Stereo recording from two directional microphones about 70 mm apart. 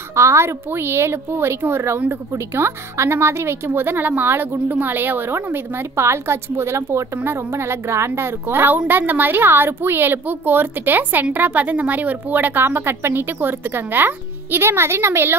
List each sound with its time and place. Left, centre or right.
0.1 s a woman's voice: right